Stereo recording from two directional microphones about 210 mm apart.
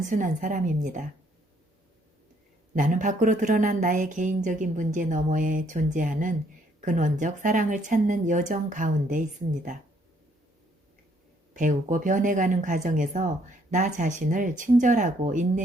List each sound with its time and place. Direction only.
0.0 s speech: 40° right (ahead or behind)
2.7 s speech: 35° right (ahead or behind)
11.5 s speech: 35° right (ahead or behind)